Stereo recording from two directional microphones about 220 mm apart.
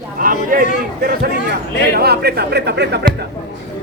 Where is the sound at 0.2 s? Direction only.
40° right (ahead or behind).